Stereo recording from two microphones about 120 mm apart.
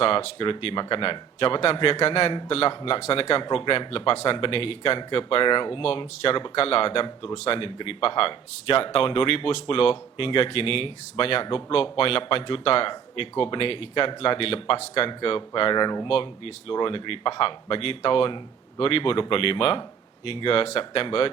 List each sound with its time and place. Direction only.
0.0 s speech: 50° left (ahead or behind)
16.0 s speech: 50° left (ahead or behind)